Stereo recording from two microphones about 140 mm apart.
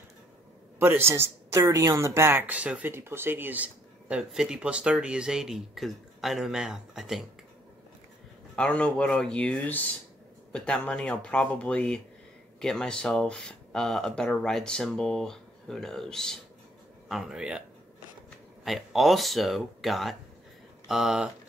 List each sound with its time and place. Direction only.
0.7 s speech: 15° right (ahead or behind)
8.5 s speech: 5° left (ahead or behind)